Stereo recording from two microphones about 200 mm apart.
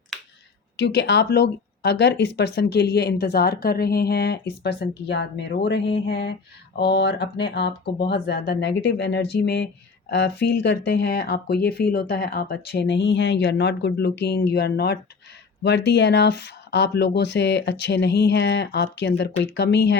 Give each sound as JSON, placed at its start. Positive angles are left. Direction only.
{"t": 0.8, "sound": "speech", "side_deg": 60}